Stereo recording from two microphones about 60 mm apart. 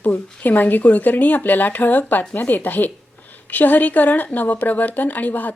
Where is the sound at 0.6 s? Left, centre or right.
Left.